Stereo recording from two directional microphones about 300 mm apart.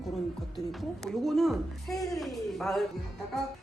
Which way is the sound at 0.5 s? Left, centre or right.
Centre.